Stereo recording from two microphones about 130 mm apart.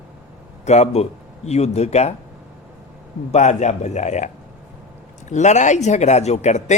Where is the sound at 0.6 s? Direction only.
60° left (ahead or behind).